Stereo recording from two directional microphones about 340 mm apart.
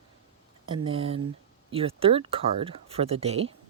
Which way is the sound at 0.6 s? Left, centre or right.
Centre.